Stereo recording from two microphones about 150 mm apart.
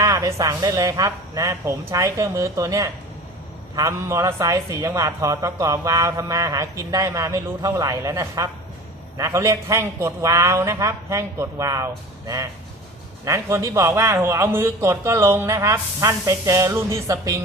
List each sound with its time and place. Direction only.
0.0 s a man's voice: 20° right (ahead or behind)
13.2 s a man's voice: 20° right (ahead or behind)